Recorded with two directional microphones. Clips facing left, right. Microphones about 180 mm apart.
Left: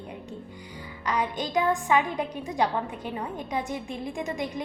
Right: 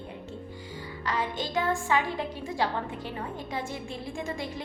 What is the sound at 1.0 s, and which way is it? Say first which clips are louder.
A woman's voice: left 3 dB; 20° left (ahead or behind).